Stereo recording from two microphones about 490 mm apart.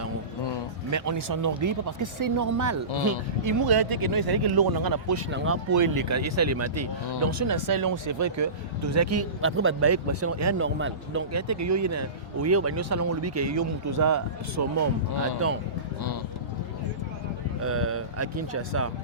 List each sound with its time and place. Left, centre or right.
0.9 s speech: right
15.1 s speech: left
17.6 s speech: right